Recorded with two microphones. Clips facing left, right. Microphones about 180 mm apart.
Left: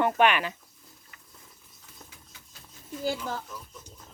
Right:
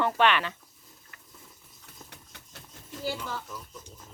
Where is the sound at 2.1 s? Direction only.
65° right (ahead or behind).